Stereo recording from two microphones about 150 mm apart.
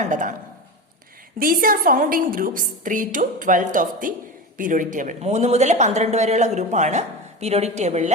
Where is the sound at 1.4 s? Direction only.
70° right (ahead or behind).